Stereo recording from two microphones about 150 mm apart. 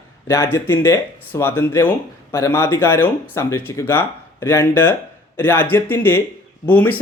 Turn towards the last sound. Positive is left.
turn(degrees=10)  # may be behind; listen again after turning